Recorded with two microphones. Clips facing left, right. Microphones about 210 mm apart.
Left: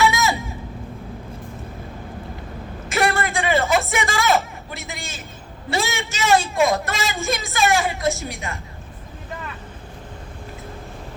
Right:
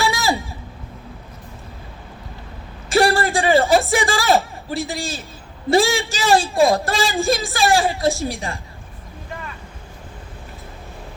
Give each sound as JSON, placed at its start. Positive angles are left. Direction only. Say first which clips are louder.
{"t": 0.0, "sound": "vehicle", "louder": "left 1 dB", "side_deg": -35}
{"t": 2.9, "sound": "a sound", "louder": "right 5 dB", "side_deg": -35}
{"t": 5.7, "sound": "a woman's voice", "louder": "right 8 dB", "side_deg": -30}